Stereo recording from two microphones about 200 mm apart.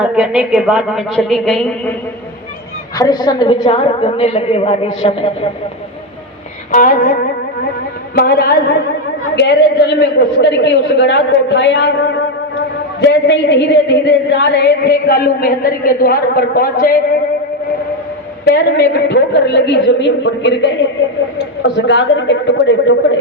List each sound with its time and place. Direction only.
0.0 s a woman's voice: 5° right (ahead or behind)
3.0 s a woman's voice: 20° left (ahead or behind)
6.7 s a woman's voice: 40° left (ahead or behind)
18.4 s a woman's voice: 55° left (ahead or behind)
21.8 s a woman's voice: 65° left (ahead or behind)